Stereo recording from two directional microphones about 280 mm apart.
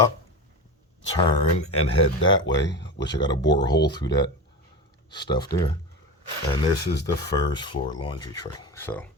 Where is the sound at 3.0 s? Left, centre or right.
Centre.